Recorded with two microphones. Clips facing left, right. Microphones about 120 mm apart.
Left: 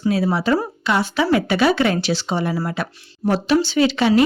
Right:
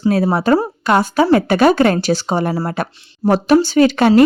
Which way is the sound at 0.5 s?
45° right (ahead or behind).